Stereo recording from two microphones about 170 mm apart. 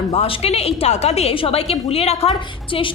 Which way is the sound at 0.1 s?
35° left (ahead or behind).